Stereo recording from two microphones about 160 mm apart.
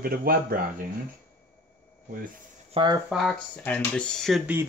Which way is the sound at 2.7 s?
30° right (ahead or behind).